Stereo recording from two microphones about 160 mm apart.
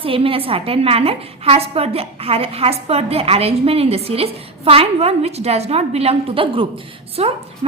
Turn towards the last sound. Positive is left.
turn(degrees=-40)  # may be behind; listen again after turning